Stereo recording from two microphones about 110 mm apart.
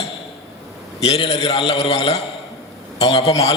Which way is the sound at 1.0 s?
65° left (ahead or behind).